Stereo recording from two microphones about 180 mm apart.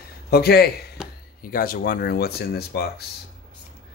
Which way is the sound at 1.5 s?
55° left (ahead or behind).